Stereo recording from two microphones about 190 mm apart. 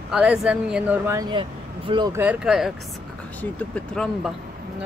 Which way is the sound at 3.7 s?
5° left (ahead or behind).